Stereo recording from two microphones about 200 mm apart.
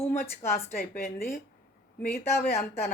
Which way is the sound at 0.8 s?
45° left (ahead or behind).